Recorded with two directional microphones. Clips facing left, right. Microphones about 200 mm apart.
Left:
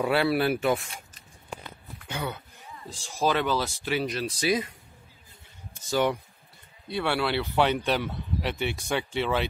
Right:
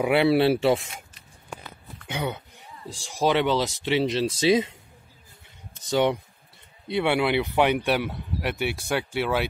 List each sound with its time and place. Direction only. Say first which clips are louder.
0.0 s speech: right 4 dB; 20° right (ahead or behind)
2.0 s speech: right 4 dB; 20° right (ahead or behind)
5.9 s speech: right 3 dB; 20° right (ahead or behind)